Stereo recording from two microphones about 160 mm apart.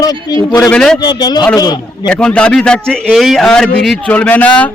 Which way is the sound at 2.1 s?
5° left (ahead or behind).